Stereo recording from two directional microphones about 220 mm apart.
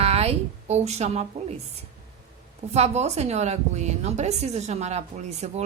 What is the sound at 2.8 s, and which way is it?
A woman's voice, 30° right (ahead or behind).